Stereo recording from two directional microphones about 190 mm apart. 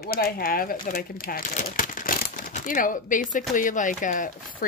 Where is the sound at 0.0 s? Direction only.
50° left (ahead or behind).